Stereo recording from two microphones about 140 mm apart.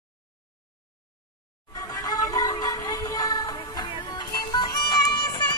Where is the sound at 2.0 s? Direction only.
25° left (ahead or behind).